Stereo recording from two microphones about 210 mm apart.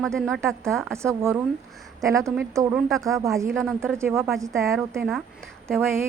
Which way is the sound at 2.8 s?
Centre (ahead or behind).